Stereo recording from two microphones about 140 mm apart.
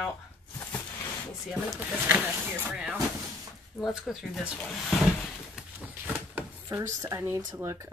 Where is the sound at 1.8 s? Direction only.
10° right (ahead or behind).